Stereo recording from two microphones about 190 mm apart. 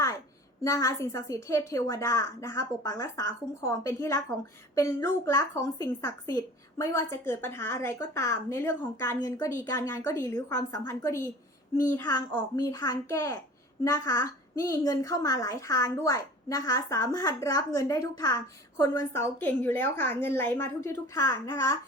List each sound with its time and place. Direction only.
0.6 s a woman's voice: 15° left (ahead or behind)